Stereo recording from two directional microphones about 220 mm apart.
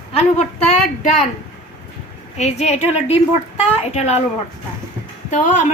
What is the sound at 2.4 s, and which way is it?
Speech, 30° left (ahead or behind).